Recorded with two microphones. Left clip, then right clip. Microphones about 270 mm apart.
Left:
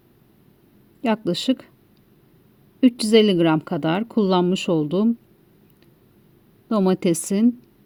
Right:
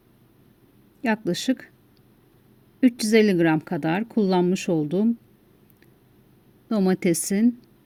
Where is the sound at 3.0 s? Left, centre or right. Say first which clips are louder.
Left 3 dB; centre.